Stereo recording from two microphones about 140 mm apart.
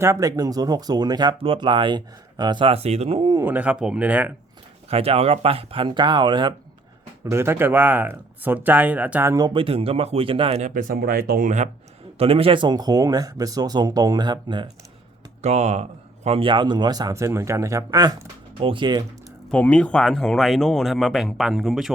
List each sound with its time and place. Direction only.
0.0 s speech: 20° right (ahead or behind); by 3.3 s 40° right (ahead or behind)
3.3 s speech: 15° right (ahead or behind)
4.9 s speech: 45° right (ahead or behind)
7.3 s speech: 20° right (ahead or behind)
9.5 s speech: 40° right (ahead or behind)
10.8 s speech: 90° right; by 11.7 s 60° right (ahead or behind)
12.1 s speech: 45° right (ahead or behind)
15.4 s speech: 50° right (ahead or behind); by 19.0 s 35° right (ahead or behind)
19.5 s speech: 10° left (ahead or behind)